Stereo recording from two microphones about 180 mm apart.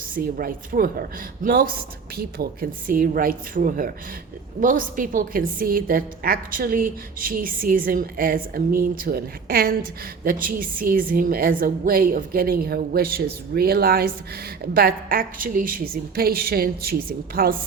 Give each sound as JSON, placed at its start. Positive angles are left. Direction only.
{"t": 0.1, "sound": "a woman's voice", "side_deg": -55}